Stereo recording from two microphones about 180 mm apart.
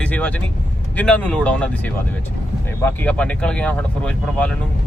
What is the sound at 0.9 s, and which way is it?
Speech, 5° left (ahead or behind).